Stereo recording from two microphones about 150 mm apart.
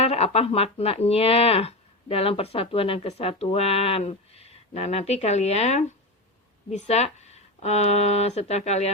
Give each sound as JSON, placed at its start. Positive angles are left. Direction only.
{"t": 0.0, "sound": "speech", "side_deg": 40}